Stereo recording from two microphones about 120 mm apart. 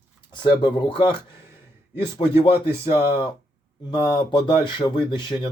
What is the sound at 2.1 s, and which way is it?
Speech, 35° left (ahead or behind).